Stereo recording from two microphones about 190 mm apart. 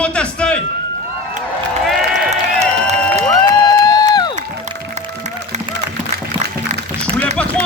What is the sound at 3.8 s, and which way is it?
Run, 20° left (ahead or behind).